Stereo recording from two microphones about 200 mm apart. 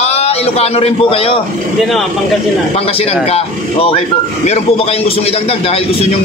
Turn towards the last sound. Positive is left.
turn(degrees=30)  # may be behind; listen again after turning